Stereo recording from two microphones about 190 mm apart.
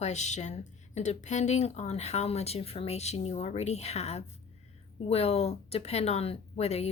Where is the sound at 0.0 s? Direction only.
35° left (ahead or behind).